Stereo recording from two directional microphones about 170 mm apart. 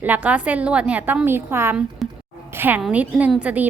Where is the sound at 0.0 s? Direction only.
10° right (ahead or behind).